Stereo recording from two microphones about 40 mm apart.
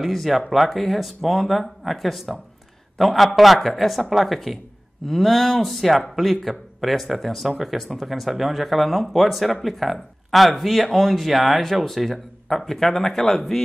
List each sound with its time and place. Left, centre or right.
0.0 s speech: centre